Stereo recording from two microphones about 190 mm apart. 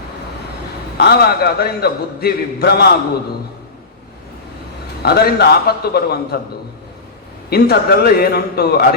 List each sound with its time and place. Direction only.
0.9 s a man's voice: 55° left (ahead or behind)
5.0 s a man's voice: 55° left (ahead or behind)
7.5 s a man's voice: 55° left (ahead or behind)